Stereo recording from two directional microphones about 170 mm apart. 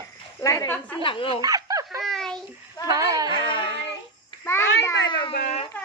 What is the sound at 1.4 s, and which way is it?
Snicker, 20° right (ahead or behind).